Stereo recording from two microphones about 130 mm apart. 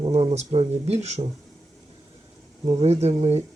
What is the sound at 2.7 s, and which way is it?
Speech, 50° right (ahead or behind).